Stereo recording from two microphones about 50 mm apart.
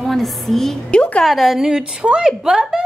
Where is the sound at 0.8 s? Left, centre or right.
Left.